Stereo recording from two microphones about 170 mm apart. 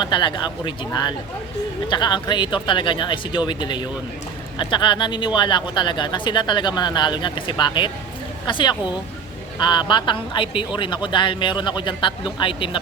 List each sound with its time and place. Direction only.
0.0 s speech: 30° left (ahead or behind)